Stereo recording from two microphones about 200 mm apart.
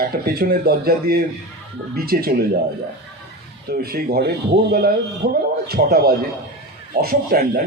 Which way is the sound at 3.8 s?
50° right (ahead or behind).